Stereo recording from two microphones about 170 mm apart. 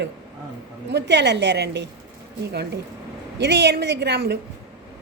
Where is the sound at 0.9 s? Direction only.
85° right.